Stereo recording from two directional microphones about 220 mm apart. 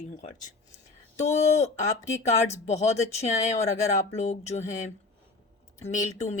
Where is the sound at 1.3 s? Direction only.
30° left (ahead or behind).